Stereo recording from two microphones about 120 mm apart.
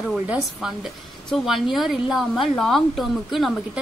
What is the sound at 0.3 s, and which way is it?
A woman's voice, 5° right (ahead or behind).